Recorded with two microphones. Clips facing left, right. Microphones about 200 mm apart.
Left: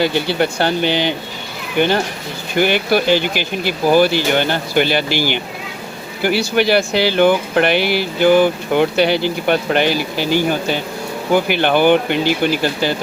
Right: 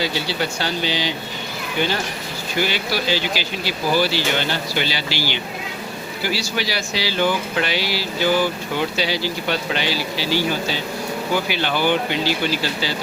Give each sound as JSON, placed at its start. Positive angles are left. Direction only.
{"t": 0.0, "sound": "speech", "side_deg": 55}